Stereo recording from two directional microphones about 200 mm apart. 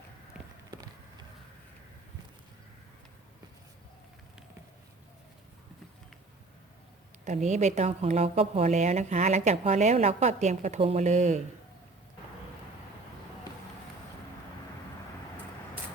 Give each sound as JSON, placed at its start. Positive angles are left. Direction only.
{"t": 7.3, "sound": "a woman's voice", "side_deg": -35}